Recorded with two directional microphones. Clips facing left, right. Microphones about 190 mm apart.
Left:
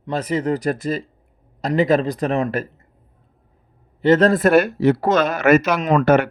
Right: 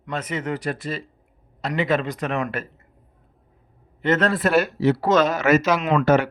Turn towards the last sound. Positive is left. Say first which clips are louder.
# left 3 dB
turn(degrees=60)  # may be behind; listen again after turning